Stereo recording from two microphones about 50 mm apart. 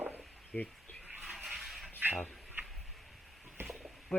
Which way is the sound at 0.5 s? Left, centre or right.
Centre.